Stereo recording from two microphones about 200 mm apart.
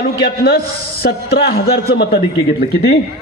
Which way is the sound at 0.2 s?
50° left (ahead or behind).